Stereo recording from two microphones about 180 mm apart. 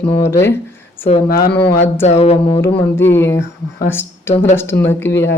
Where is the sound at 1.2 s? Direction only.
55° left (ahead or behind).